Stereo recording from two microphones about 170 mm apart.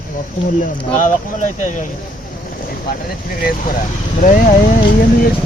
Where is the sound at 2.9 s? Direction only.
60° left (ahead or behind).